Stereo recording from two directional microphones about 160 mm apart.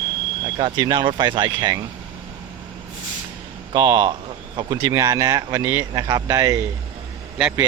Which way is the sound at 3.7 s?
20° right (ahead or behind).